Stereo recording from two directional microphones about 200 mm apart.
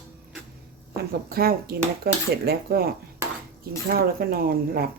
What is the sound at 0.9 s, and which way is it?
Speech, 50° right (ahead or behind).